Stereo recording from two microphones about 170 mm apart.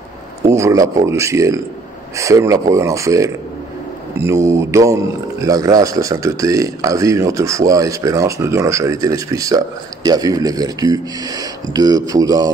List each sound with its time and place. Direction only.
0.4 s speech: 15° right (ahead or behind)